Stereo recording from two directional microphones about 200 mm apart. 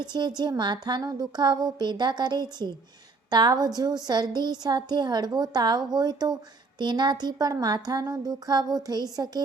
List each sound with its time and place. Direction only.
0.0 s a woman's voice: 20° right (ahead or behind)